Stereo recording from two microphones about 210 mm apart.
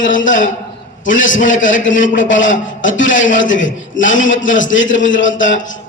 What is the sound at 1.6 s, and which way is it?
A man's voice, 60° left (ahead or behind).